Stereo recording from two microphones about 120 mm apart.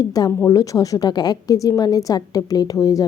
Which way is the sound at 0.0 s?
30° left (ahead or behind).